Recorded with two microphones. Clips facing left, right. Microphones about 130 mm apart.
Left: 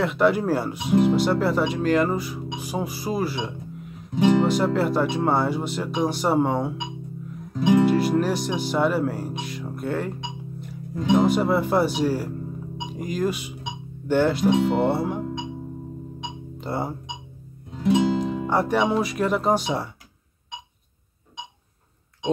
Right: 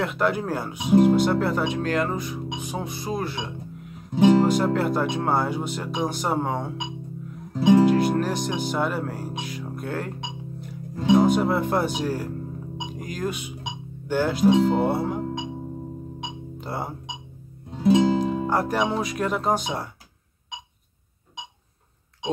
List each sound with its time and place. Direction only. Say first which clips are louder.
0.0 s speech: left 4 dB; centre (ahead or behind)
7.5 s music: right 2 dB; 30° right (ahead or behind)
7.8 s speech: even; centre (ahead or behind)
11.1 s speech: left 1 dB; centre (ahead or behind)
16.5 s speech: left 4 dB; centre (ahead or behind)
17.6 s music: right 3 dB; 30° right (ahead or behind)
17.9 s music: right 1 dB; centre (ahead or behind)
18.5 s speech: left 5 dB; centre (ahead or behind)